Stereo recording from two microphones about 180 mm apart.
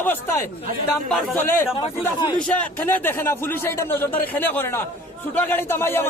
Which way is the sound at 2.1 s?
25° left (ahead or behind).